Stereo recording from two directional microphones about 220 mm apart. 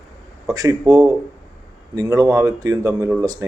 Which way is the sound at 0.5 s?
15° right (ahead or behind).